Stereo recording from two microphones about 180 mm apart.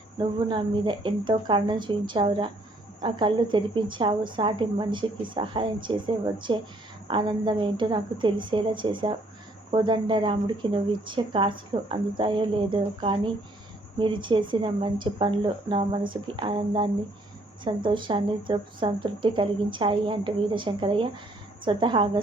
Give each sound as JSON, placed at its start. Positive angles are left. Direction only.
{"t": 0.2, "sound": "a woman's voice", "side_deg": -25}